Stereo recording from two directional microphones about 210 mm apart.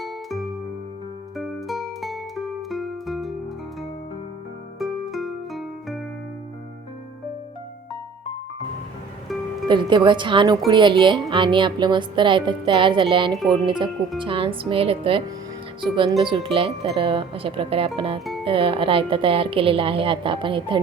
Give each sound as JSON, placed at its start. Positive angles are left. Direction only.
{"t": 0.0, "sound": "music", "side_deg": 0}
{"t": 4.8, "sound": "music", "side_deg": 0}
{"t": 9.6, "sound": "a woman's voice", "side_deg": -20}